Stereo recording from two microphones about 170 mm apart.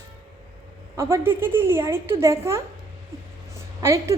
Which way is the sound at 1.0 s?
15° right (ahead or behind).